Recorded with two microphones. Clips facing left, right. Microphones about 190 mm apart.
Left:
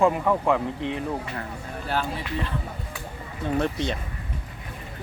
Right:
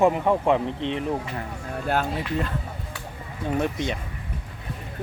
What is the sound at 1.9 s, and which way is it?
Speech, 50° right (ahead or behind).